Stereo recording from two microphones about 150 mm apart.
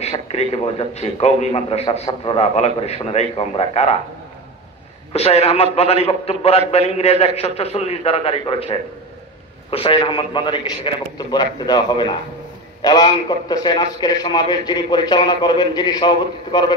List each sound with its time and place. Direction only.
0.0 s a man's voice: 45° left (ahead or behind)
5.1 s a man's voice: 45° left (ahead or behind)